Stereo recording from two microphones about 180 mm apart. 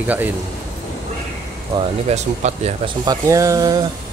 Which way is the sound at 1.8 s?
35° right (ahead or behind).